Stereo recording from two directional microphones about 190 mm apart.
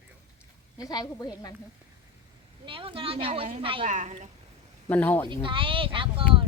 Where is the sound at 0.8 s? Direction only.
20° left (ahead or behind).